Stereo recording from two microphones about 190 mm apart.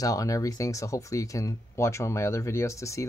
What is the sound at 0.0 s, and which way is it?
Speech, 15° left (ahead or behind).